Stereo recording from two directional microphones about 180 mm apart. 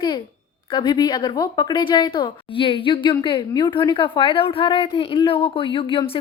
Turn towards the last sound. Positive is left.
turn(degrees=30)  # may be behind; listen again after turning